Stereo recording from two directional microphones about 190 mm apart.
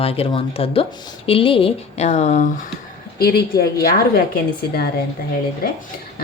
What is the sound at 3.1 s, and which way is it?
Speech, 55° left (ahead or behind).